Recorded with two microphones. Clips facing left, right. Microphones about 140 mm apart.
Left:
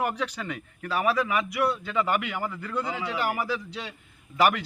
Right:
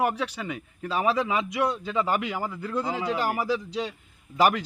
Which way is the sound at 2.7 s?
35° right (ahead or behind).